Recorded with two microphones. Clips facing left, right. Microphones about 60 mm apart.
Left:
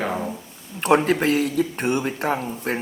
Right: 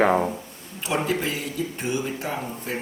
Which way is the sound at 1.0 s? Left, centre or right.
Left.